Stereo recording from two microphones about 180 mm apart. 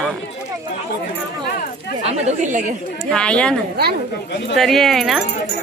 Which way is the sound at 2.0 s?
40° right (ahead or behind).